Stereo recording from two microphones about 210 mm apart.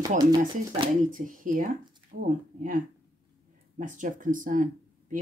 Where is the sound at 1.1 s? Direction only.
40° right (ahead or behind).